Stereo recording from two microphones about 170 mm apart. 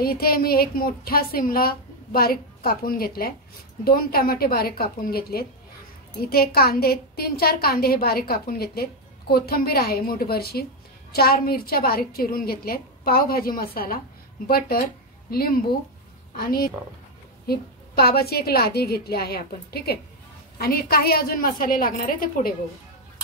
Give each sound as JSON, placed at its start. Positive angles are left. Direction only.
{"t": 0.0, "sound": "a woman's voice", "side_deg": 65}
{"t": 15.3, "sound": "a woman's voice", "side_deg": 60}